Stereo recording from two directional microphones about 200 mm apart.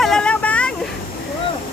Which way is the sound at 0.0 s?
5° left (ahead or behind).